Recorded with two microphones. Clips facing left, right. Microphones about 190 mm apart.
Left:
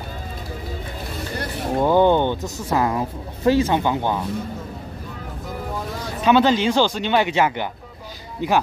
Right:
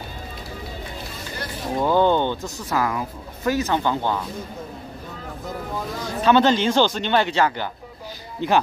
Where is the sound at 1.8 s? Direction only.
15° left (ahead or behind).